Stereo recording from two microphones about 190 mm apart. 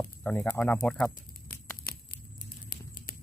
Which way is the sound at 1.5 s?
45° left (ahead or behind).